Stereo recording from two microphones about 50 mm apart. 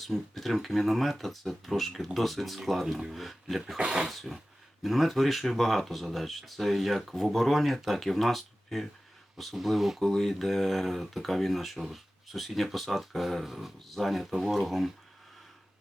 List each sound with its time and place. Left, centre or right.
0.0 s speech: centre
2.8 s speech: centre
3.1 s speech: centre
3.8 s speech: centre
4.1 s speech: centre
10.0 s speech: centre